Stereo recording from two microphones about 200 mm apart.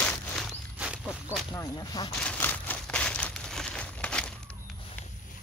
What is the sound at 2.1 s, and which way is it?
Crumpling, 5° left (ahead or behind).